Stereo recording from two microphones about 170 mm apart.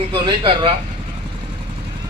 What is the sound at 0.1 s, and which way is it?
Speech, 30° right (ahead or behind).